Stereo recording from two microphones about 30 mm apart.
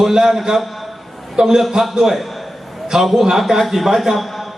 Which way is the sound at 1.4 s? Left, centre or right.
Centre.